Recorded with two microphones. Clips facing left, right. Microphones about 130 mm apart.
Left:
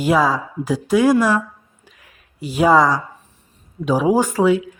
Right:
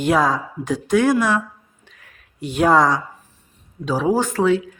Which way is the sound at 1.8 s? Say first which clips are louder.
Left 1 dB; 5° left (ahead or behind).